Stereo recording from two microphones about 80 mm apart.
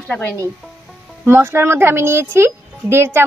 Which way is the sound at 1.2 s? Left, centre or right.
Right.